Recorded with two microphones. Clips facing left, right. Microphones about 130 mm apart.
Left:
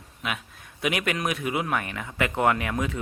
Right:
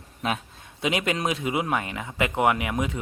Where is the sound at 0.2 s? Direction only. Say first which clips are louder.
Right 4 dB; 35° right (ahead or behind).